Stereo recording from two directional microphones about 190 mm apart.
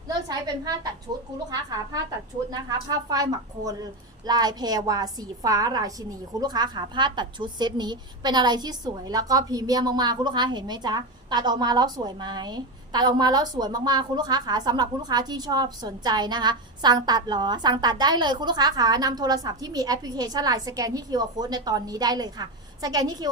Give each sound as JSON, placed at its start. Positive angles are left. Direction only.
{"t": 0.1, "sound": "a woman's voice", "side_deg": -20}
{"t": 2.5, "sound": "a woman's voice", "side_deg": -20}